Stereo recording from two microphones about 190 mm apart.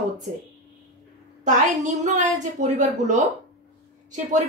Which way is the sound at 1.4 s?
40° right (ahead or behind).